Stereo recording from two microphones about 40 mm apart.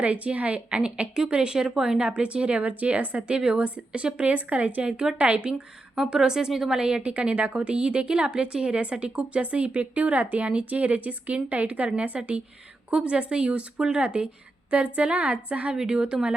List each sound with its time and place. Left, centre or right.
0.0 s a woman's voice: right; by 2.0 s centre
2.0 s speech: right
6.1 s a woman's voice: centre; by 15.7 s right
15.7 s a woman's voice: right